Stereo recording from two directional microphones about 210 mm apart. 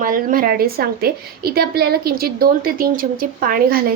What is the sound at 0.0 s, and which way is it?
A woman's voice, 40° right (ahead or behind).